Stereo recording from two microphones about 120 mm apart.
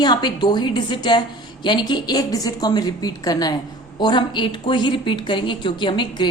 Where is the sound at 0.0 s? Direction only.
35° left (ahead or behind).